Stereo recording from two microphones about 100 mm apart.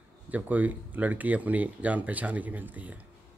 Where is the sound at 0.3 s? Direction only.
15° right (ahead or behind).